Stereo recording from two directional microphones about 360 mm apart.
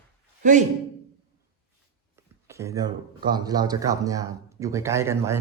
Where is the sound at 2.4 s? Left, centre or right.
Centre.